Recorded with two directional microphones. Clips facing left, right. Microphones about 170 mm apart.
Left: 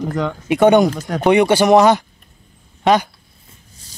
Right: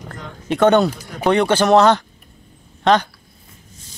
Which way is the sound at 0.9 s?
90° left.